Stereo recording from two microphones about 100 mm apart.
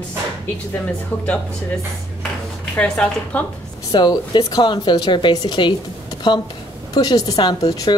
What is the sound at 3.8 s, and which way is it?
A woman's voice, 45° left (ahead or behind).